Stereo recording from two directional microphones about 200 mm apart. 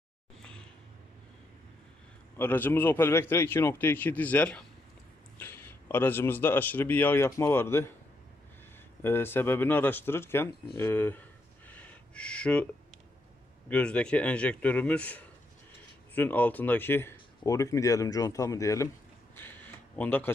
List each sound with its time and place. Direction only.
2.4 s speech: 10° left (ahead or behind)
9.0 s speech: 10° left (ahead or behind)
11.7 s a sound: 5° left (ahead or behind)
13.7 s a man's voice: 5° left (ahead or behind)
20.0 s speech: 10° left (ahead or behind)